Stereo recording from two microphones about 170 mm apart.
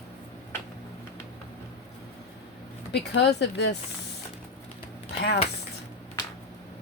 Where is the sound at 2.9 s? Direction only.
80° left.